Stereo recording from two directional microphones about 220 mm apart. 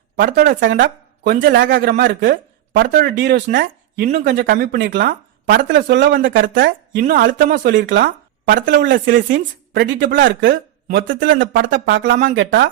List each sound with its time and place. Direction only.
0.2 s speech: 40° right (ahead or behind)
6.4 s speech: 40° right (ahead or behind)